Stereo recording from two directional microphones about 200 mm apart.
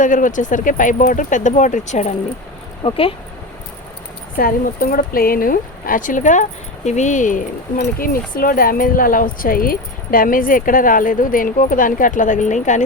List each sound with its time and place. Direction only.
0.0 s speech: 40° left (ahead or behind)
4.4 s speech: 45° left (ahead or behind)